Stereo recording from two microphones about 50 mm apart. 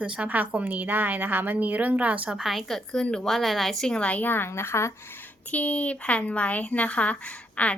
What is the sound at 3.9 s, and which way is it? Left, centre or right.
Speech, left.